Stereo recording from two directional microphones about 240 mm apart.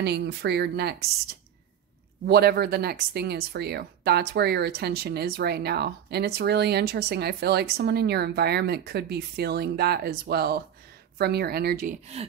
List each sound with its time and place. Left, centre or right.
0.0 s speech: right
2.2 s speech: right
12.1 s a sound: right